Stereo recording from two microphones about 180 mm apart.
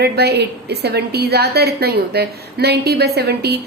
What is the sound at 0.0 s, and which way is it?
A woman's voice, 65° right (ahead or behind).